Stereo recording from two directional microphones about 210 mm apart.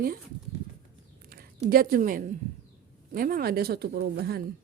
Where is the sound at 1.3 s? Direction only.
45° right (ahead or behind).